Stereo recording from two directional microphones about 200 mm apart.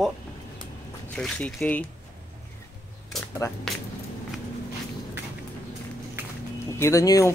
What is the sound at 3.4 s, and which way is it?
Speech, 15° left (ahead or behind).